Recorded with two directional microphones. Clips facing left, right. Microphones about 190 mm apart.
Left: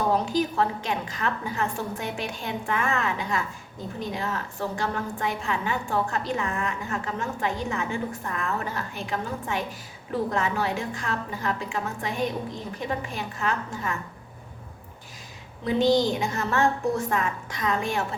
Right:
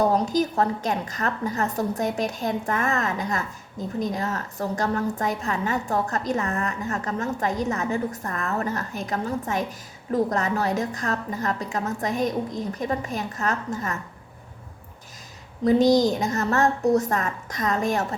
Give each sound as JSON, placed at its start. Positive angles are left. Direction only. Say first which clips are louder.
{"t": 0.3, "sound": "a woman's voice", "louder": "right 2 dB", "side_deg": -40}
{"t": 15.6, "sound": "a woman's voice", "louder": "right 4 dB", "side_deg": -40}